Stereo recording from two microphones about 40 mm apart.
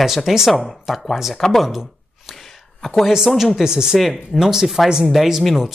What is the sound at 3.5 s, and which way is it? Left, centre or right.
Speech, centre.